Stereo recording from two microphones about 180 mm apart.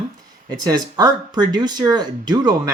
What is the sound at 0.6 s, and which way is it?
Speech, 20° right (ahead or behind).